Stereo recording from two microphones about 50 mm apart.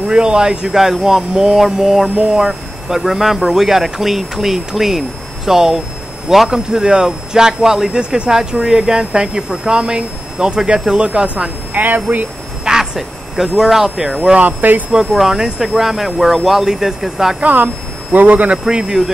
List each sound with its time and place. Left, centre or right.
0.0 s a man's voice: centre
2.1 s speech: centre
2.4 s a man's voice: centre
11.7 s speech: right
12.6 s speech: centre
14.6 s speech: right
15.1 s speech: centre
17.4 s speech: right
18.7 s a man's voice: centre